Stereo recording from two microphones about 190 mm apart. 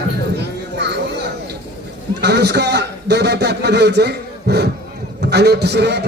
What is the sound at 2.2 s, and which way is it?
A man's voice, 60° right (ahead or behind).